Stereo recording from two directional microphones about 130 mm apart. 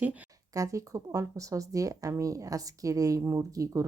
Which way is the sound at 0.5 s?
25° right (ahead or behind).